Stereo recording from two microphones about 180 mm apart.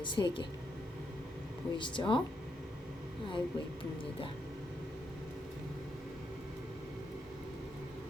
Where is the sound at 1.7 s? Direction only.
25° left (ahead or behind).